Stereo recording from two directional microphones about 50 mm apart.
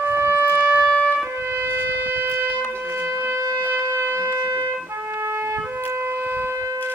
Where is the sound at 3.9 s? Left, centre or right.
Right.